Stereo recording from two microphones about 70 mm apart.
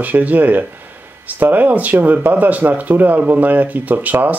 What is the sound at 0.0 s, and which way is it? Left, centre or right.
Speech, right.